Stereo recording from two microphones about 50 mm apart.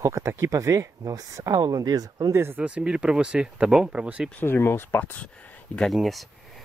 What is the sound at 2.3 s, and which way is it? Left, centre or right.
Speech, right.